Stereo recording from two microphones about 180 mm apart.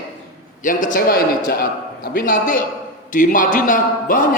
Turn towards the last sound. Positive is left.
turn(degrees=50)  # may be behind; listen again after turning